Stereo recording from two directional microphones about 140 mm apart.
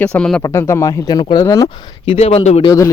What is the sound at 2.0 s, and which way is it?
Speech, 45° left (ahead or behind).